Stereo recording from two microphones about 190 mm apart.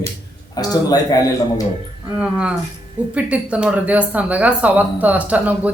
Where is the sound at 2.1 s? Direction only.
5° right (ahead or behind).